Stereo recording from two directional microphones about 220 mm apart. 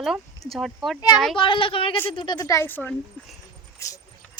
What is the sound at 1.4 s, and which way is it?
A woman's voice, 25° left (ahead or behind).